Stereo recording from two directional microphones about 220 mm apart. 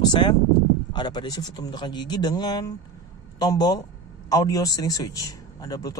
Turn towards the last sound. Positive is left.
turn(degrees=15)  # may be behind; listen again after turning